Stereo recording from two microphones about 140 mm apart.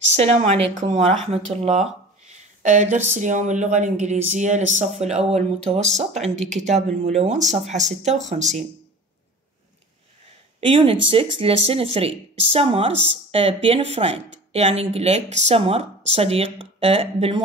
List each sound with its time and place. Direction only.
0.1 s speech: 50° right (ahead or behind)
2.2 s a sound: 60° right (ahead or behind)
3.1 s speech: 60° right (ahead or behind)
10.7 s speech: 40° right (ahead or behind)